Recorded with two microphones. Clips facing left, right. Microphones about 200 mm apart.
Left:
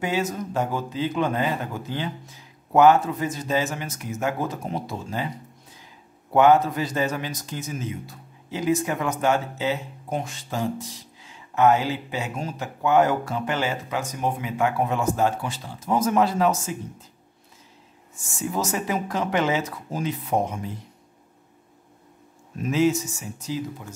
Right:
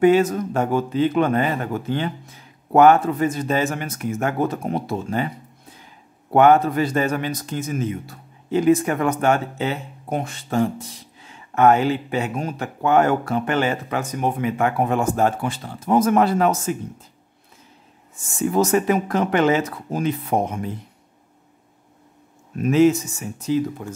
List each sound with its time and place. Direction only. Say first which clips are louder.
0.0 s a man's voice: right 10 dB; 55° right (ahead or behind)
6.3 s a man's voice: right 3 dB; 55° right (ahead or behind)
18.4 s a man's voice: right 8 dB; 55° right (ahead or behind)
22.6 s a man's voice: right 6 dB; 60° right (ahead or behind)